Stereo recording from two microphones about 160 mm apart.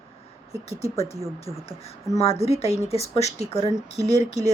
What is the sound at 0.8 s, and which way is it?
Speech, 40° left (ahead or behind).